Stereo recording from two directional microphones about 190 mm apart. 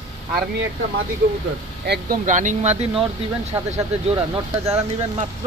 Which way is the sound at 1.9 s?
45° right (ahead or behind).